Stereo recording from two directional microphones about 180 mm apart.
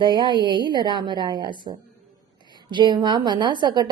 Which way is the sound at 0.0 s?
25° right (ahead or behind).